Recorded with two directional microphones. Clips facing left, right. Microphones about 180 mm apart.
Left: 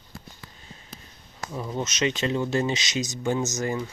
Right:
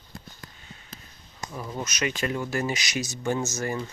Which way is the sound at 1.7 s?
25° left (ahead or behind).